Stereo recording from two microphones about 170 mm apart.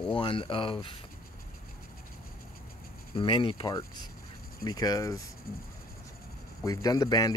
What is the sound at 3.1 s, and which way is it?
Speech, 30° left (ahead or behind).